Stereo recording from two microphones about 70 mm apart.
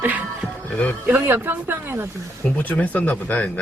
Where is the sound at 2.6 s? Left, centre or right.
Left.